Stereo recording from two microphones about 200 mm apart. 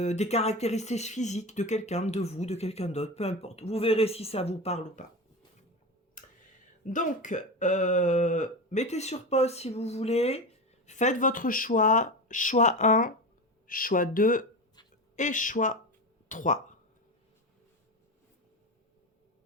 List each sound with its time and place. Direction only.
0.0 s speech: 35° left (ahead or behind)
6.2 s a sound: 40° left (ahead or behind)
6.8 s speech: 40° left (ahead or behind)